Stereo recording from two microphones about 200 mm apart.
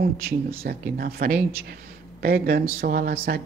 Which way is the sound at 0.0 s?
50° right (ahead or behind).